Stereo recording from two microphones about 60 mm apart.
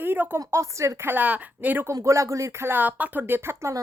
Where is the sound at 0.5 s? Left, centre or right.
Right.